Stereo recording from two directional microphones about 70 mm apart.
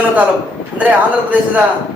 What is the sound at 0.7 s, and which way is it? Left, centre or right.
Speech, right.